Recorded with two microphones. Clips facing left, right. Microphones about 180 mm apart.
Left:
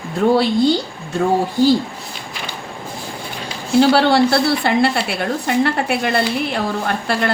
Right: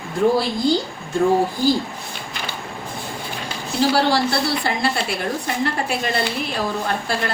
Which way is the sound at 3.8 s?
60° left (ahead or behind).